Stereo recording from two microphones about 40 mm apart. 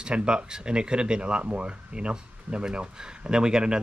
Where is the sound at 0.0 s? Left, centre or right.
Right.